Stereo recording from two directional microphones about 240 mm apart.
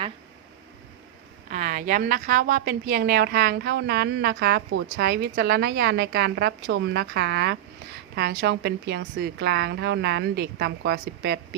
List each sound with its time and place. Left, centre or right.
1.5 s a woman's voice: right